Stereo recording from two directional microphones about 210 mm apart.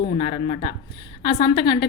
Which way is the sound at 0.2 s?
25° left (ahead or behind).